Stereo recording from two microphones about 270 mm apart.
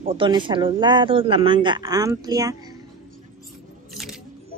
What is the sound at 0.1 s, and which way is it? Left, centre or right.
Speech, centre.